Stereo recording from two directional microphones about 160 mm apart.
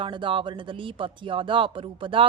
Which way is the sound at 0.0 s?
30° right (ahead or behind).